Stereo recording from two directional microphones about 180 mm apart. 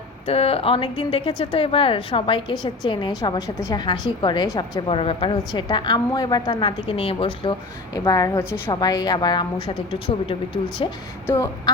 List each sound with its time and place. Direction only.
0.3 s a woman's voice: 35° left (ahead or behind)